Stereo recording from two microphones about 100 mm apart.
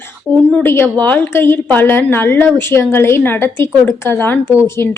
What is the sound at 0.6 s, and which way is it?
A woman's voice, 20° left (ahead or behind).